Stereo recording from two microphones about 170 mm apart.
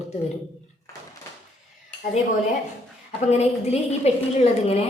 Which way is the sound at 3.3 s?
40° left (ahead or behind).